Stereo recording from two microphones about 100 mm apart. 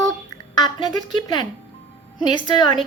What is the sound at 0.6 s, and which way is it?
A woman's voice, 45° left (ahead or behind).